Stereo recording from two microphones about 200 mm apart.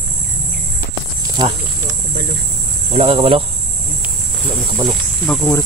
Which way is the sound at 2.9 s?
30° right (ahead or behind).